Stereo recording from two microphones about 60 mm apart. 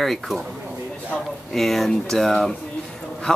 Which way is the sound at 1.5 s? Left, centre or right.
Centre.